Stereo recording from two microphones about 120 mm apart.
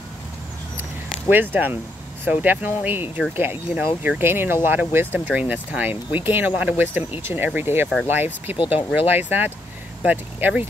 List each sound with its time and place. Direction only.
1.3 s speech: 15° right (ahead or behind)